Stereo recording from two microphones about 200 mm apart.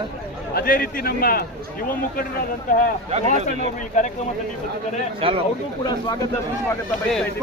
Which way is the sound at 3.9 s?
35° left (ahead or behind).